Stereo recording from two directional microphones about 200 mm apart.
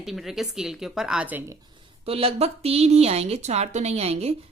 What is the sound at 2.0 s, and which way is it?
A woman's voice, 30° right (ahead or behind).